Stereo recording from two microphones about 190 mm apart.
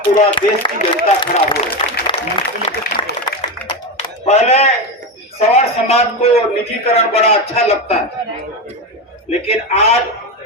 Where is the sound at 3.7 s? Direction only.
35° left (ahead or behind).